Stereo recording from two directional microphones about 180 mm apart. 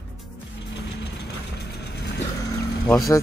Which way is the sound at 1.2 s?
65° left (ahead or behind).